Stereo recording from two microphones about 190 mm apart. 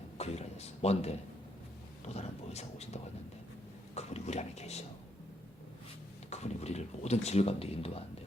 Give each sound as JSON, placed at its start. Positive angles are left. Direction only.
{"t": 0.2, "sound": "a sound", "side_deg": 35}
{"t": 2.0, "sound": "speech", "side_deg": 35}
{"t": 6.3, "sound": "speech", "side_deg": 35}